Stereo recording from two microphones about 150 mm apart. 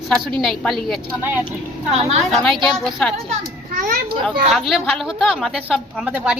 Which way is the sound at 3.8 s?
70° right (ahead or behind).